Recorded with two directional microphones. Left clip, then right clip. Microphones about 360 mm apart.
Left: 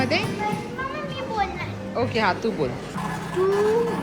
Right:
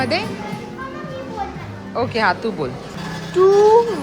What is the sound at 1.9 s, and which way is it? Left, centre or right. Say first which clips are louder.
Speech: right 4 dB; centre.